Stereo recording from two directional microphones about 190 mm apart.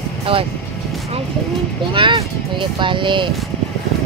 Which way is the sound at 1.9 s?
25° right (ahead or behind).